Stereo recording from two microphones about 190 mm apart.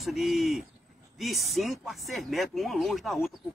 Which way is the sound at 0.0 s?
Centre (ahead or behind).